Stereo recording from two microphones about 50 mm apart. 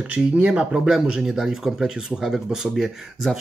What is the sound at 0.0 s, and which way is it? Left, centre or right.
Speech, right.